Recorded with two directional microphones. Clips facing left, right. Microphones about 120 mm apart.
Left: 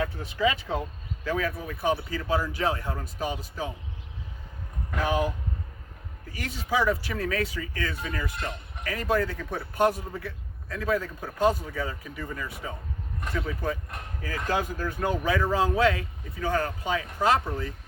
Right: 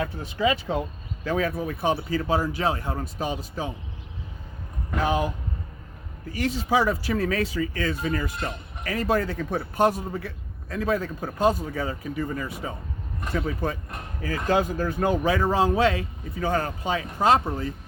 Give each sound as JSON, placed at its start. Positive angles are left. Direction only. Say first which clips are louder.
{"t": 0.0, "sound": "speech", "louder": "right 1 dB", "side_deg": -25}
{"t": 4.9, "sound": "speech", "louder": "right 2 dB", "side_deg": -25}
{"t": 6.3, "sound": "speech", "louder": "right 5 dB", "side_deg": -30}